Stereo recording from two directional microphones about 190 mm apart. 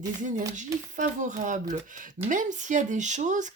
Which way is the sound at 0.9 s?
40° right (ahead or behind).